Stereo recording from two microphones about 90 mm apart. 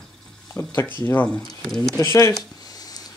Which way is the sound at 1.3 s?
5° left (ahead or behind).